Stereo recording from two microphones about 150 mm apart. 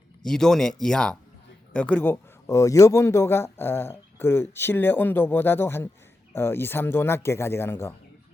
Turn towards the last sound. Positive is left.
turn(degrees=15)  # may be behind; listen again after turning